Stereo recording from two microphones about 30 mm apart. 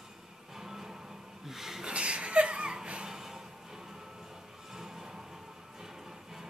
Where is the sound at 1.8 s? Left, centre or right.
Right.